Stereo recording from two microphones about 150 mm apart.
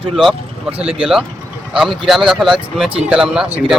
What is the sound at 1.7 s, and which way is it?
Speech, 5° right (ahead or behind).